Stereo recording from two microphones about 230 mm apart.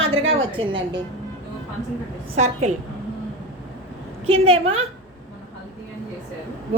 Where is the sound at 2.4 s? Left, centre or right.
Right.